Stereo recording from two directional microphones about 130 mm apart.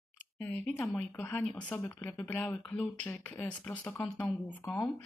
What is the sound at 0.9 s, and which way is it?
Speech, 10° left (ahead or behind).